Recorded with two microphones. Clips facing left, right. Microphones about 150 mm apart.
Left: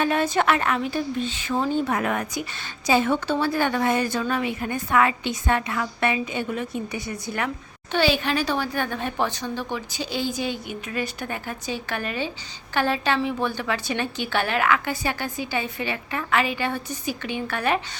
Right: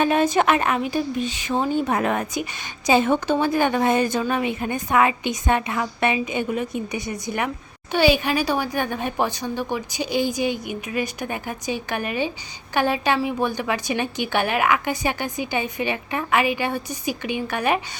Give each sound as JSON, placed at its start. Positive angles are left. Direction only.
{"t": 0.0, "sound": "a woman's voice", "side_deg": -20}